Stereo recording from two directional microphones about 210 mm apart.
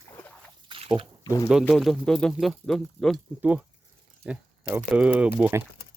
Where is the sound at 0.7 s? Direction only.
25° right (ahead or behind).